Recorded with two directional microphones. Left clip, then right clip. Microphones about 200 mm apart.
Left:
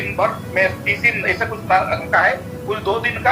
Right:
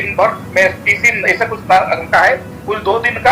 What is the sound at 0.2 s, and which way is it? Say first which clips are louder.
Speech: right 5 dB; 45° right (ahead or behind).